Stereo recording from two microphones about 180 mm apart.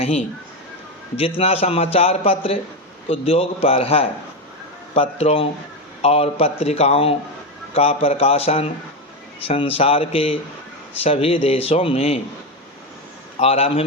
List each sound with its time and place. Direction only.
0.0 s speech: 35° left (ahead or behind)
1.4 s speech: 35° left (ahead or behind)
13.4 s speech: 35° left (ahead or behind)